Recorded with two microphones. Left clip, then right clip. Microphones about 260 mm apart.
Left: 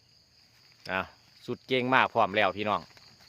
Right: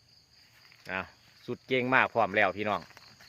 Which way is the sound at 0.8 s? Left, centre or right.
Centre.